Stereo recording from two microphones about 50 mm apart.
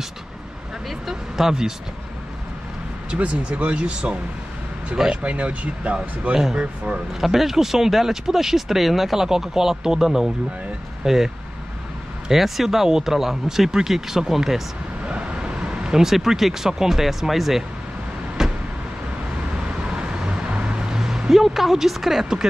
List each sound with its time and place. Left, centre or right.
0.8 s speech: centre
3.2 s speech: right
7.2 s speech: centre
15.0 s speech: centre
18.4 s vehicle: centre
20.0 s a sound: centre
22.2 s speech: centre